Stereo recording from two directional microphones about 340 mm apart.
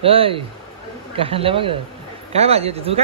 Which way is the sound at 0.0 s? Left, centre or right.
Centre.